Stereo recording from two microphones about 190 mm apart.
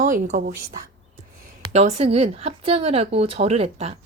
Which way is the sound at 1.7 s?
35° right (ahead or behind).